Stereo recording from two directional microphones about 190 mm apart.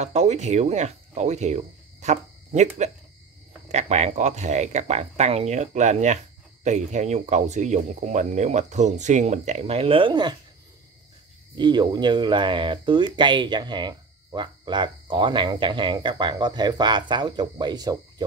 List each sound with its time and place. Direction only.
0.0 s speech: 35° right (ahead or behind)
11.5 s speech: 25° right (ahead or behind)